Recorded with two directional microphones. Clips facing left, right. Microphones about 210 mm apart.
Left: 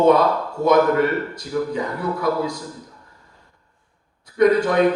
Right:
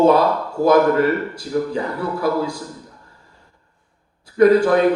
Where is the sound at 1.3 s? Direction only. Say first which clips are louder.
Right 2 dB; 30° right (ahead or behind).